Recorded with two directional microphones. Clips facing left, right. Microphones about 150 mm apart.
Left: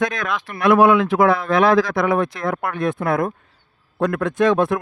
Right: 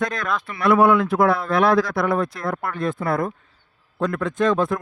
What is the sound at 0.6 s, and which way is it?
Speech, 90° left.